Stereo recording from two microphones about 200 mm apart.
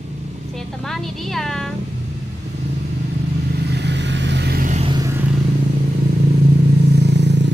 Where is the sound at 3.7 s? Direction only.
60° right (ahead or behind); by 4.8 s 45° right (ahead or behind).